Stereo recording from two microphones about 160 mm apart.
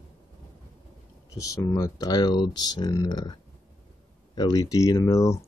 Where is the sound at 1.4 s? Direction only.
20° left (ahead or behind).